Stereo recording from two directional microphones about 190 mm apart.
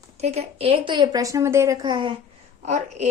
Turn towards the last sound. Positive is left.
turn(degrees=-35)  # may be behind; listen again after turning